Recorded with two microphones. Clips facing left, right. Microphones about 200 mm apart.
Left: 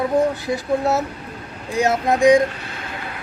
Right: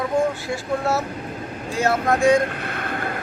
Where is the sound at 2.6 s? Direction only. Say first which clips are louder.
Right 5 dB; 55° right (ahead or behind).